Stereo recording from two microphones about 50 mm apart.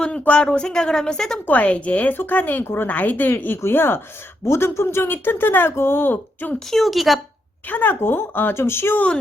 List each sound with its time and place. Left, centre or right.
0.0 s speech: centre
1.5 s a woman's voice: left
2.6 s speech: left
2.9 s speech: left
4.4 s speech: left
5.1 s speech: left
6.7 s a woman's voice: centre
7.7 s speech: left